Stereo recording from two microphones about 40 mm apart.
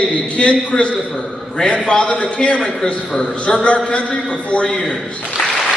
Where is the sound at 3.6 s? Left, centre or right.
Left.